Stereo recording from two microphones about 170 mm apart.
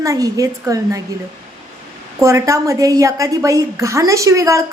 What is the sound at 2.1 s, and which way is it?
A woman's voice, 15° right (ahead or behind).